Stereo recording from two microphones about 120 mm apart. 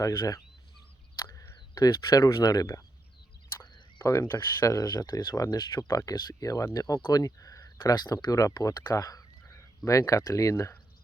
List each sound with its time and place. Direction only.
0.0 s speech: 30° left (ahead or behind)